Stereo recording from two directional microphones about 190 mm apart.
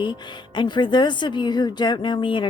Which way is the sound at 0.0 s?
25° left (ahead or behind).